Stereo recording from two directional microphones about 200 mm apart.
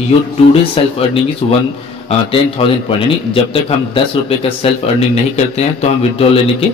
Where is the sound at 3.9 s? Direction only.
30° left (ahead or behind).